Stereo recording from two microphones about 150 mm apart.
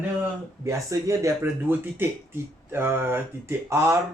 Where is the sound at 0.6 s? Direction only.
20° right (ahead or behind).